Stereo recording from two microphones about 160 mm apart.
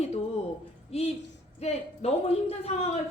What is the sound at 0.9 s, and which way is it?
A woman's voice, 40° left (ahead or behind).